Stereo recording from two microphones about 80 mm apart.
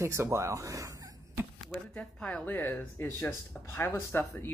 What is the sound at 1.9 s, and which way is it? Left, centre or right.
Speech, centre.